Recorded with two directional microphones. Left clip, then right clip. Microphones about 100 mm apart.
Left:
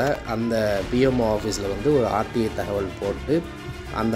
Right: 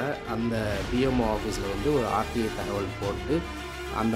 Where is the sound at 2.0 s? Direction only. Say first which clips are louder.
Left 3 dB; 15° left (ahead or behind).